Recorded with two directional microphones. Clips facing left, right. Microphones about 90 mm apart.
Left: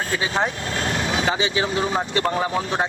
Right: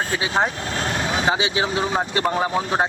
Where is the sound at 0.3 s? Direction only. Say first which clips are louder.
Right 4 dB; 35° right (ahead or behind).